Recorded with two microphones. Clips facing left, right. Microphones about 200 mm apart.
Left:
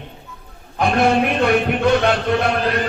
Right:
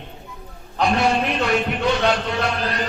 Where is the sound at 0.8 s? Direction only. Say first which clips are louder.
Left 3 dB; 55° left (ahead or behind).